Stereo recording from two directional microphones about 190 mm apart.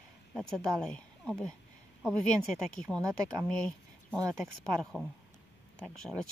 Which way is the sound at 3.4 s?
5° left (ahead or behind).